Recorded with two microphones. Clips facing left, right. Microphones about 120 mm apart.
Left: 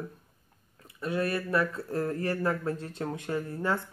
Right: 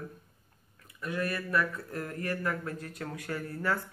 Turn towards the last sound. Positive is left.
turn(degrees=25)  # may be behind; listen again after turning